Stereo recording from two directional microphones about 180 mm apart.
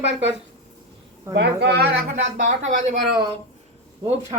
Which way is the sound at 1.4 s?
65° right (ahead or behind).